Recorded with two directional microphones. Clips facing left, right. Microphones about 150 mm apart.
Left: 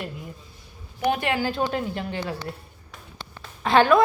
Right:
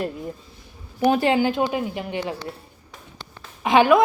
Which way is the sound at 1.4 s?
20° right (ahead or behind).